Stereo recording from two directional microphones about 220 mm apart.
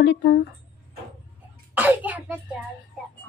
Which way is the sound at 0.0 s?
50° left (ahead or behind).